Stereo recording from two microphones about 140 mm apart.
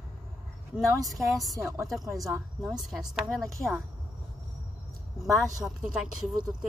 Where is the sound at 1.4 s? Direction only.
20° right (ahead or behind).